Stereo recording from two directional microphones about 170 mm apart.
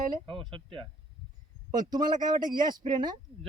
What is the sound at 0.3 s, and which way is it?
Speech, 30° right (ahead or behind).